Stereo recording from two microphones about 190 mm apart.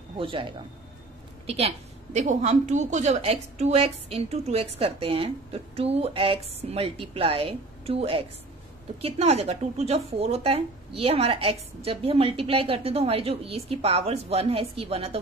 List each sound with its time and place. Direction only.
0.2 s a man's voice: 25° right (ahead or behind)